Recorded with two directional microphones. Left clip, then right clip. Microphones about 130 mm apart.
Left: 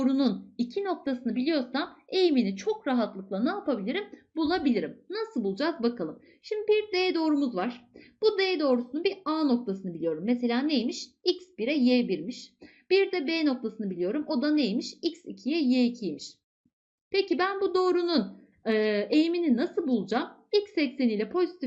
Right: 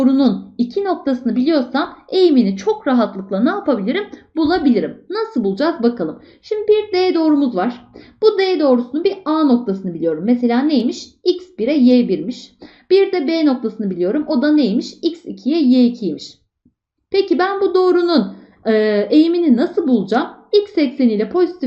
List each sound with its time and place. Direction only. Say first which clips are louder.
0.0 s speech: right 12 dB; 25° left (ahead or behind)